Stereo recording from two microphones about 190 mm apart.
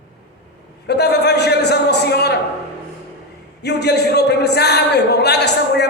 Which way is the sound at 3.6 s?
60° left (ahead or behind).